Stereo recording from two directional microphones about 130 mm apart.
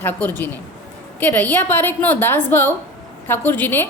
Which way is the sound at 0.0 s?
15° left (ahead or behind).